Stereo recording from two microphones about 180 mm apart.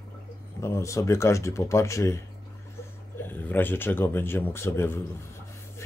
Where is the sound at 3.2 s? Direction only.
10° left (ahead or behind).